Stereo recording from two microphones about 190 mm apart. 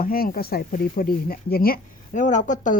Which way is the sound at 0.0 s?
50° left (ahead or behind).